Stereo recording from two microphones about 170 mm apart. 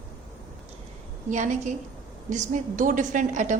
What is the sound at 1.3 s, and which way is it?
A woman's voice, 45° right (ahead or behind).